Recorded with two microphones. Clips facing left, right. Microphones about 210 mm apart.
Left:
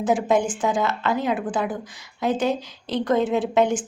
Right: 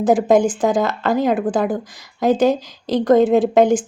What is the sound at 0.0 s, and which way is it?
A woman's voice, 40° right (ahead or behind).